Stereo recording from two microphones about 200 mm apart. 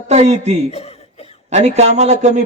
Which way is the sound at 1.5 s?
35° right (ahead or behind).